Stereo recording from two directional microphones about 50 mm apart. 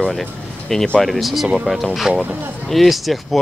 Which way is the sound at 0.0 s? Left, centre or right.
Centre.